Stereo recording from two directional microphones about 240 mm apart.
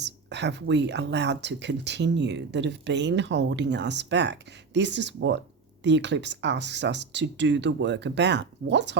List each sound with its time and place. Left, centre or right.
0.0 s speech: right